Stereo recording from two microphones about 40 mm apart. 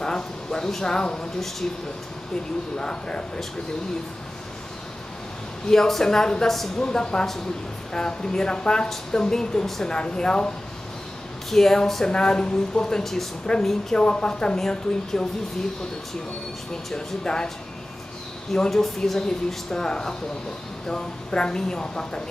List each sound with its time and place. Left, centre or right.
0.0 s speech: centre
2.8 s speech: left
5.7 s speech: centre
11.5 s speech: centre
12.1 s speech: left
13.0 s speech: centre
16.9 s speech: centre
18.5 s speech: centre